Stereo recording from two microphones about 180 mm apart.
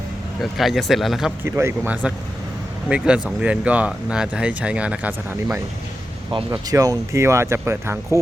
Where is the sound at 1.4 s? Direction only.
15° right (ahead or behind).